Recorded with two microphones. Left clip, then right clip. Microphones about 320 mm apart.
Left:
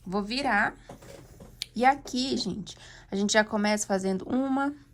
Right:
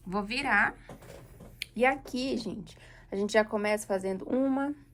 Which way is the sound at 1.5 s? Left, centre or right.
Centre.